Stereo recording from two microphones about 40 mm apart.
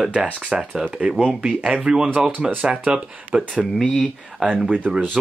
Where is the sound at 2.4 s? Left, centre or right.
Right.